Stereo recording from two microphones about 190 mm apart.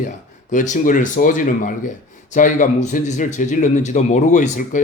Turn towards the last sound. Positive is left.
turn(degrees=40)  # may be behind; listen again after turning